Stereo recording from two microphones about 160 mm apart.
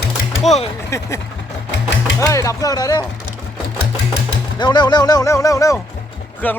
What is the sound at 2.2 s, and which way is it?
Speech, 20° left (ahead or behind).